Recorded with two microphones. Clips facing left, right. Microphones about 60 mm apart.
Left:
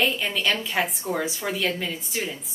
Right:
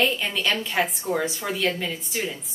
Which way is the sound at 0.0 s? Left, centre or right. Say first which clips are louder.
Even; centre.